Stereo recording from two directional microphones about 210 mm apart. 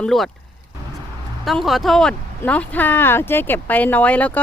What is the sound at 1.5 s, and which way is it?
Speech, centre (ahead or behind).